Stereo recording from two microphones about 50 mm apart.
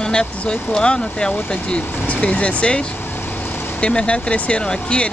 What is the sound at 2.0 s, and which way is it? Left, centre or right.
Speech, left.